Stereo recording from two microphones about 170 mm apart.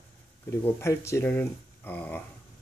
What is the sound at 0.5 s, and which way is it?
Speech, 15° left (ahead or behind).